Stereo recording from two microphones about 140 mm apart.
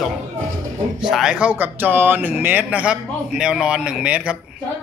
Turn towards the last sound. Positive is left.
turn(degrees=-5)  # may be behind; listen again after turning